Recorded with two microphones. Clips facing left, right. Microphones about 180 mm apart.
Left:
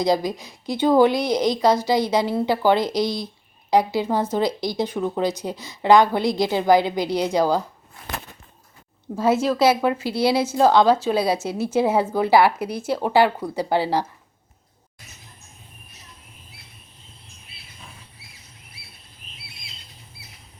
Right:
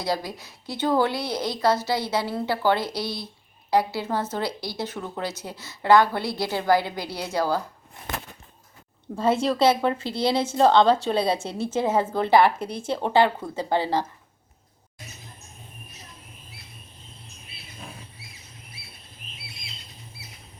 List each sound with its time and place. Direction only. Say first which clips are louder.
0.0 s speech: left 7 dB; 15° left (ahead or behind)
9.1 s speech: left 3 dB; 5° left (ahead or behind)